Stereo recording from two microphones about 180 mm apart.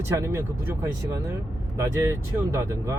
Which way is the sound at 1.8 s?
15° right (ahead or behind).